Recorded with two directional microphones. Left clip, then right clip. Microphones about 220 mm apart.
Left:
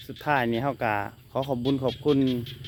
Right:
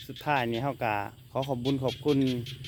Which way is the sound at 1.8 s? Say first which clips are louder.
Left 3 dB; 30° right (ahead or behind).